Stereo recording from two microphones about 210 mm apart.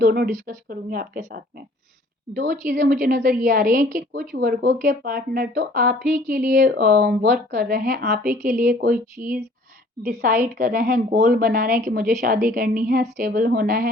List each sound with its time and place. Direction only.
0.0 s a woman's voice: 50° right (ahead or behind)
2.3 s a woman's voice: 40° right (ahead or behind)
4.1 s a woman's voice: 50° right (ahead or behind)
6.6 s a woman's voice: 50° right (ahead or behind)